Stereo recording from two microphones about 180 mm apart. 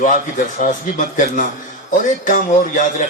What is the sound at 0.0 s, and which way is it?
A man's voice, 45° left (ahead or behind).